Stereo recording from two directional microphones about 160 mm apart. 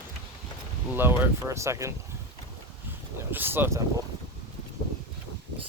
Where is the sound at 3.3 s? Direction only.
10° right (ahead or behind).